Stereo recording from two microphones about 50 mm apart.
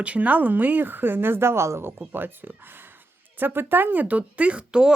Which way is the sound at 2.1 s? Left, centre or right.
Right.